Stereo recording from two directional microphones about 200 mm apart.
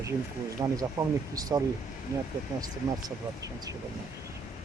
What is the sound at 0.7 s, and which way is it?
Speech, 15° right (ahead or behind).